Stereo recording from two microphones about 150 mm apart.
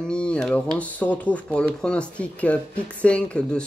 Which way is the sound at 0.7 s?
10° left (ahead or behind).